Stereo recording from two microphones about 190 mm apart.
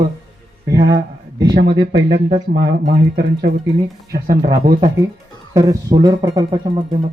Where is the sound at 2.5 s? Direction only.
65° right (ahead or behind).